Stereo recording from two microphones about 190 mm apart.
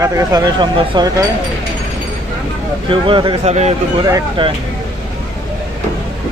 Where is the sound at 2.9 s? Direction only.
25° right (ahead or behind).